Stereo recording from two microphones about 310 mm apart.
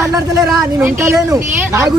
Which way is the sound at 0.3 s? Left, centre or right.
Centre.